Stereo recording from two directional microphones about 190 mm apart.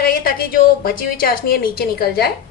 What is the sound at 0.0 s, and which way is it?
A woman's voice, 50° left (ahead or behind).